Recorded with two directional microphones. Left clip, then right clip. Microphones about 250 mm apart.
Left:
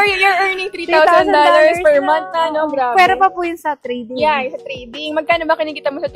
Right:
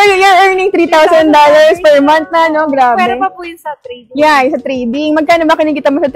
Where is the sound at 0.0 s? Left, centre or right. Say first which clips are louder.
Right 7 dB; right.